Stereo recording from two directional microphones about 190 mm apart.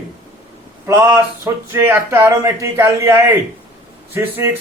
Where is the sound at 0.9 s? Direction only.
15° right (ahead or behind).